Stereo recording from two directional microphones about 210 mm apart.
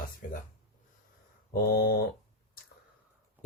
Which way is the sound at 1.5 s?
45° left (ahead or behind).